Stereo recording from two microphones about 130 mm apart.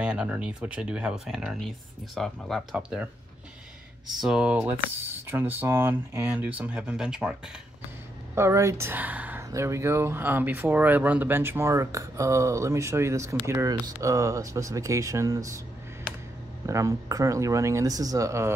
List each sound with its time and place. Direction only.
0.0 s speech: 10° right (ahead or behind)
4.2 s speech: 5° right (ahead or behind)
8.4 s speech: 20° right (ahead or behind)
16.6 s speech: 25° right (ahead or behind)